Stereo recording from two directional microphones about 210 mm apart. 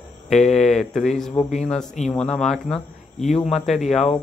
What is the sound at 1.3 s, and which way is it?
Speech, 35° left (ahead or behind).